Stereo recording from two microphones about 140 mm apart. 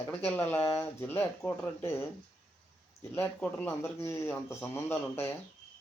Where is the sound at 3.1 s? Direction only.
15° left (ahead or behind).